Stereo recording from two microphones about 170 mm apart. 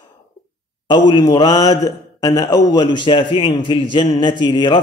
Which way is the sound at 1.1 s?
25° left (ahead or behind).